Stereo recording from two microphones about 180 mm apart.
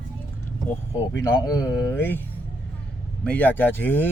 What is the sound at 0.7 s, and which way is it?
Speech, 15° left (ahead or behind).